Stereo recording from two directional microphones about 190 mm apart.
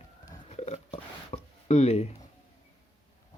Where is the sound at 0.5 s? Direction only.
35° left (ahead or behind).